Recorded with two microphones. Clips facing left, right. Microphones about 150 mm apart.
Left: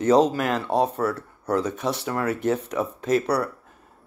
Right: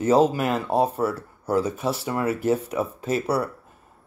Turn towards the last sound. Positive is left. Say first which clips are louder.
# left 2 dB
turn(degrees=-5)  # may be behind; listen again after turning